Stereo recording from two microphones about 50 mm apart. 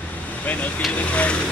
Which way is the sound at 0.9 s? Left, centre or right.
Left.